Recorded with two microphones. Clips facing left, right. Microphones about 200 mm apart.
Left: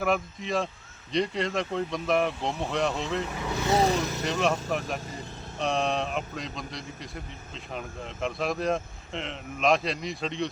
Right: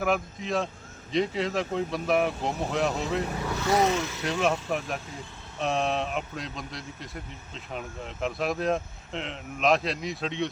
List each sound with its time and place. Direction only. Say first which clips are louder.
0.0 s a man's voice: even; centre (ahead or behind)
3.7 s speech: even; 30° left (ahead or behind)
4.2 s a man's voice: right 2 dB; centre (ahead or behind)
5.5 s a man's voice: even; centre (ahead or behind)